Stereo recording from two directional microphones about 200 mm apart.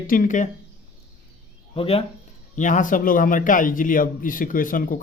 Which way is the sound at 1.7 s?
30° left (ahead or behind).